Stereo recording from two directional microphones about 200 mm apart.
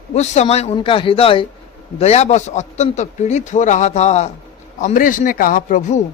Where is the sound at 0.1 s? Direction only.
35° left (ahead or behind).